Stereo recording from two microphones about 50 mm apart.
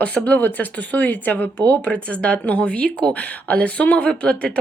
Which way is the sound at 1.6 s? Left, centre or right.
Left.